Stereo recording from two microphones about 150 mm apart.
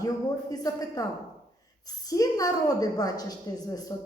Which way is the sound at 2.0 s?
25° left (ahead or behind).